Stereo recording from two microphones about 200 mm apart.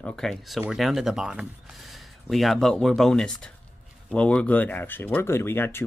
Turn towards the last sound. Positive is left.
turn(degrees=10)  # may be behind; listen again after turning